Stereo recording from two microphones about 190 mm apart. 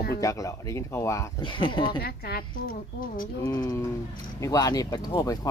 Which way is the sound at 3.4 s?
20° left (ahead or behind).